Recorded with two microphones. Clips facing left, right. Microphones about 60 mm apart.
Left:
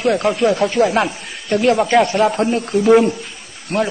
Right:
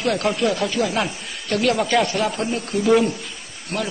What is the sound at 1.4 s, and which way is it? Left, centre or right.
Speech, left.